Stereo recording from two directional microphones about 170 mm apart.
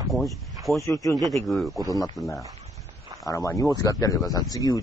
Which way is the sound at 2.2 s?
20° left (ahead or behind).